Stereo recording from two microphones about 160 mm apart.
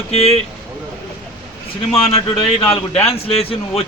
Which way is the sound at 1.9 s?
35° left (ahead or behind).